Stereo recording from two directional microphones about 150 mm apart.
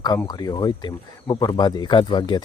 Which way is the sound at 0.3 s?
25° left (ahead or behind).